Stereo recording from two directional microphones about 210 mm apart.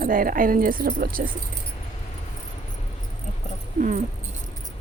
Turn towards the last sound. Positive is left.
turn(degrees=-35)  # may be behind; listen again after turning